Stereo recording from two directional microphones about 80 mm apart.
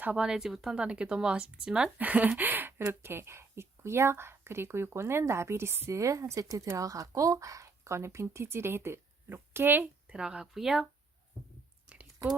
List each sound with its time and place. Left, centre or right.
0.2 s speech: centre; by 9.9 s right
10.1 s speech: centre
12.2 s speech: right